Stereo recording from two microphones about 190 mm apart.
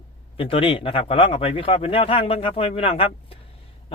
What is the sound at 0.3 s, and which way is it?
A man's voice, 30° left (ahead or behind).